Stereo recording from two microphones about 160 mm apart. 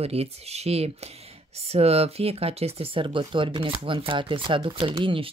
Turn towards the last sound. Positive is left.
turn(degrees=-35)  # may be behind; listen again after turning